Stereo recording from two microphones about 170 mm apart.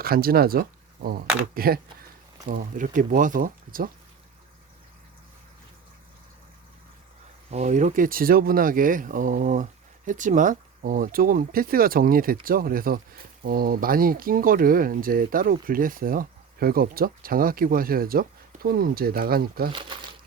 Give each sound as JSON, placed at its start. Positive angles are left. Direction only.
{"t": 0.0, "sound": "speech", "side_deg": -60}
{"t": 2.5, "sound": "speech", "side_deg": -50}
{"t": 7.5, "sound": "speech", "side_deg": -45}
{"t": 19.7, "sound": "speech", "side_deg": -30}